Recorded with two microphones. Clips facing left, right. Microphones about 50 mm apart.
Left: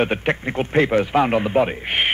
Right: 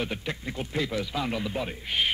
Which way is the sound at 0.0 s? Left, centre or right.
Left.